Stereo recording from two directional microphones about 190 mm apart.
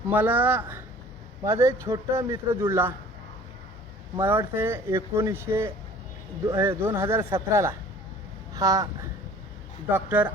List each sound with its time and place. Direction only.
0.1 s speech: 10° right (ahead or behind)
4.2 s speech: 15° right (ahead or behind)
9.9 s speech: 10° right (ahead or behind)